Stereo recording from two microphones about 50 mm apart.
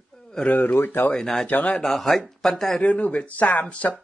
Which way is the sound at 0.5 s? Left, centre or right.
Left.